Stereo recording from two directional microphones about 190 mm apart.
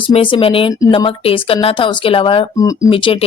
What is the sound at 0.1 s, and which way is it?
A woman's voice, 25° left (ahead or behind).